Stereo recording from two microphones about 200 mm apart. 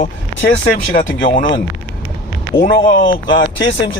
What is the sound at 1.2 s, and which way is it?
Speech, 45° left (ahead or behind).